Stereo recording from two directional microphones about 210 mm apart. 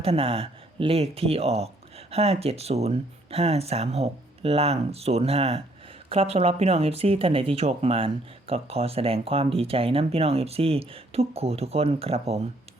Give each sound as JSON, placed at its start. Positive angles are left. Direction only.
{"t": 0.0, "sound": "speech", "side_deg": -25}